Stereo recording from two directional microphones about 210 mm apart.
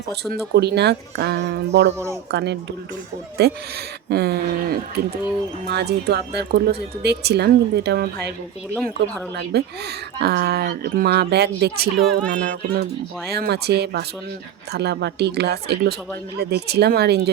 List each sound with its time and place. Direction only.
0.1 s speech: 50° right (ahead or behind)
8.7 s speech: 5° left (ahead or behind)
9.3 s speech: 55° right (ahead or behind)
11.9 s speech: centre (ahead or behind)
12.7 s speech: 50° right (ahead or behind)